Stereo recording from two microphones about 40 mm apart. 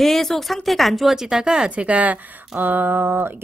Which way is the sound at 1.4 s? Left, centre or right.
Right.